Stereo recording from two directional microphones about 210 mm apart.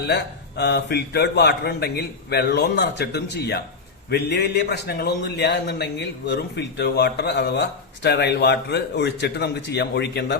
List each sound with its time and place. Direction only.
0.1 s a man's voice: 55° left (ahead or behind)